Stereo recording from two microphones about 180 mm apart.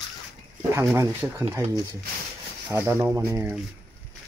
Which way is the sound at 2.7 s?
15° right (ahead or behind).